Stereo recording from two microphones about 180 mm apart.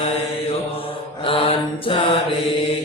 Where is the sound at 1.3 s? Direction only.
30° left (ahead or behind).